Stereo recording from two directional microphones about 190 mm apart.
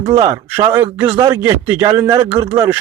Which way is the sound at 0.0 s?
30° right (ahead or behind).